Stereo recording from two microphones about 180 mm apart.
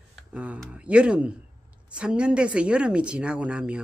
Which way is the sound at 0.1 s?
5° right (ahead or behind).